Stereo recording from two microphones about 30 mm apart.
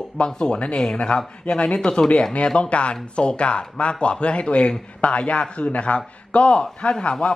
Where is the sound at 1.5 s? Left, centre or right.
Left.